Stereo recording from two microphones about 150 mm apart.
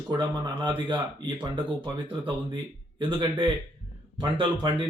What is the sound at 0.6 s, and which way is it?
Speech, 30° right (ahead or behind).